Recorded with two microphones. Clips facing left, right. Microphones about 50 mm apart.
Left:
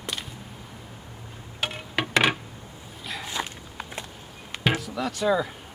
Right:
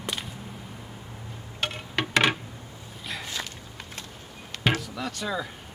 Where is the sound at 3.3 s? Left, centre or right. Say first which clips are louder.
Left 4 dB; centre.